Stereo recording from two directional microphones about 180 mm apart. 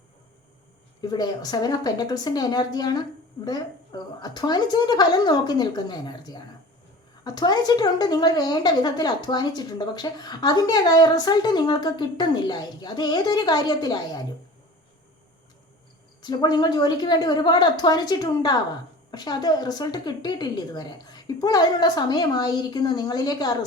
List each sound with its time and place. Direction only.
1.0 s speech: 20° left (ahead or behind)
16.2 s speech: 25° left (ahead or behind)